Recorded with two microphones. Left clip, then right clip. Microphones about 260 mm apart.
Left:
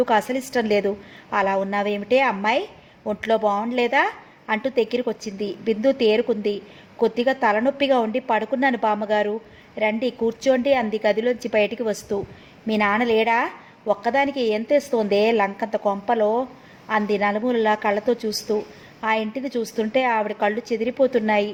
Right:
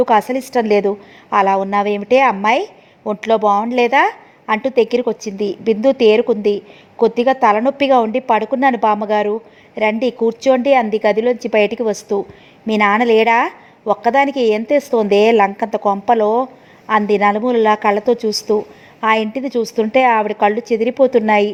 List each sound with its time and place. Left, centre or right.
0.0 s a woman's voice: right